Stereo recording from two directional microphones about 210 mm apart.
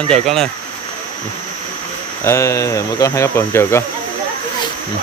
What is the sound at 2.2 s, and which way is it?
Speech, 15° left (ahead or behind).